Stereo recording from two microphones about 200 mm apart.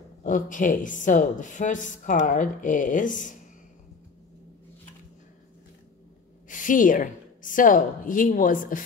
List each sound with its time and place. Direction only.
0.2 s a woman's voice: 40° left (ahead or behind)
6.5 s a woman's voice: 40° left (ahead or behind)